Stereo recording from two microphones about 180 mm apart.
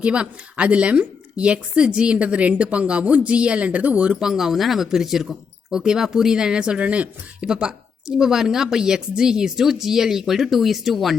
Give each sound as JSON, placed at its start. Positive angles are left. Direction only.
{"t": 0.0, "sound": "a woman's voice", "side_deg": -5}